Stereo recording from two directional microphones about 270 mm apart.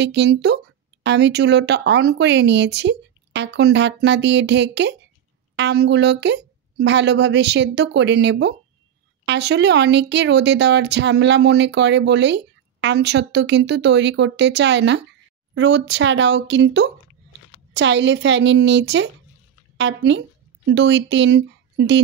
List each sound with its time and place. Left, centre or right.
0.0 s speech: right